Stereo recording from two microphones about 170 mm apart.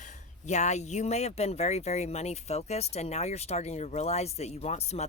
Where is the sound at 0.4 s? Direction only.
45° left (ahead or behind).